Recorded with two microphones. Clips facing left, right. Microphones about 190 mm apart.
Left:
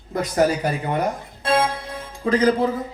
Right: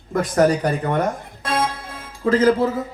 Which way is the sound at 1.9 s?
15° left (ahead or behind).